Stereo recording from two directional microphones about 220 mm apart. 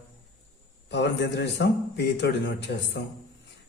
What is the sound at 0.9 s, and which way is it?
A man's voice, 50° left (ahead or behind).